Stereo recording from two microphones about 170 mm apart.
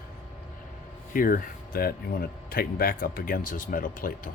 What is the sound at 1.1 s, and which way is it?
Speech, 55° left (ahead or behind).